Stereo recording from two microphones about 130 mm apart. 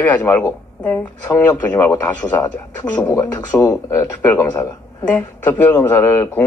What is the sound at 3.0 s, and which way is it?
Speech, 30° left (ahead or behind).